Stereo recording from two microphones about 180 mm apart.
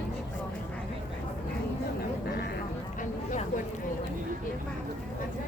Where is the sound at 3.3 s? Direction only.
45° left (ahead or behind).